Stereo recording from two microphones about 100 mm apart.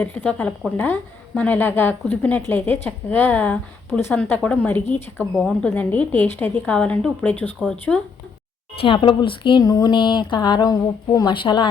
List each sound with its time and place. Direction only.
0.0 s a woman's voice: 15° left (ahead or behind)
5.3 s speech: 5° right (ahead or behind)
5.6 s a woman's voice: 15° left (ahead or behind)
8.8 s speech: 60° left (ahead or behind); by 11.3 s 40° left (ahead or behind)
11.3 s speech: 50° left (ahead or behind)